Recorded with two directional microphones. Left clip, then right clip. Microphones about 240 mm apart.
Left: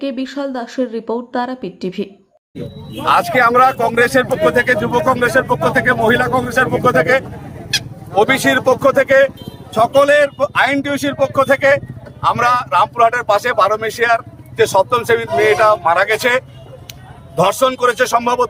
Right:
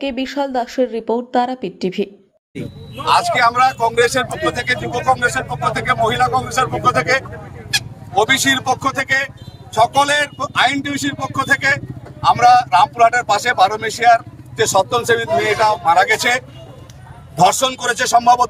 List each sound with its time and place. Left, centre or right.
0.0 s a woman's voice: left
0.3 s a woman's voice: centre
0.8 s a woman's voice: left
3.1 s a man's voice: centre